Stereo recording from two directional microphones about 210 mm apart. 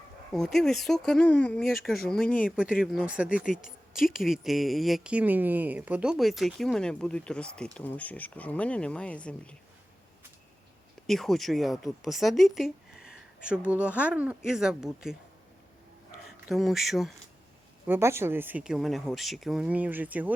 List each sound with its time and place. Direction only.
0.3 s speech: centre (ahead or behind)
3.4 s a woman's voice: 40° left (ahead or behind)
3.9 s speech: centre (ahead or behind)
11.0 s speech: centre (ahead or behind)
16.2 s speech: centre (ahead or behind)
17.8 s speech: 10° right (ahead or behind)